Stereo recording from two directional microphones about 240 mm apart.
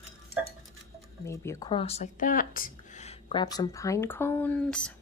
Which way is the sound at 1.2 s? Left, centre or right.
Centre.